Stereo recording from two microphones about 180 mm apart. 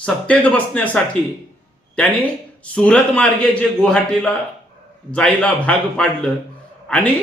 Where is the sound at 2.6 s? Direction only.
5° left (ahead or behind).